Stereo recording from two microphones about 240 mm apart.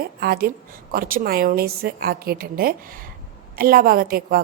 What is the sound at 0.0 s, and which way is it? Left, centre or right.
A woman's voice, right.